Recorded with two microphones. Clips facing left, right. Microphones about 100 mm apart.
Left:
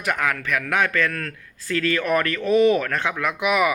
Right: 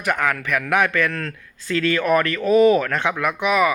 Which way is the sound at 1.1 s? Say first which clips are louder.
Right 2 dB; 25° right (ahead or behind).